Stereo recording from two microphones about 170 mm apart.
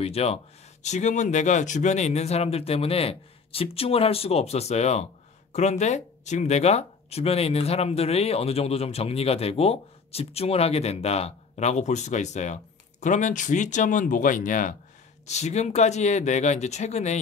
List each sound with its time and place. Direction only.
0.0 s speech: 35° left (ahead or behind)